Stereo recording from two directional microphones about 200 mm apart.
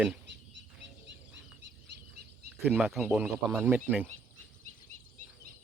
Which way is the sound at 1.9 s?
60° right (ahead or behind).